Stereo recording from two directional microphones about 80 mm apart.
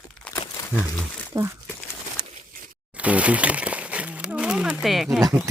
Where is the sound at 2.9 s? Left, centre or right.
Centre.